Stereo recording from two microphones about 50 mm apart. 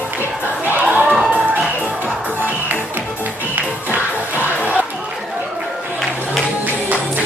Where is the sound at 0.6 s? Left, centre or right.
Right.